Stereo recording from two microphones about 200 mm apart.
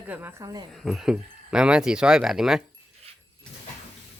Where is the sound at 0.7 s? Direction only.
Centre (ahead or behind).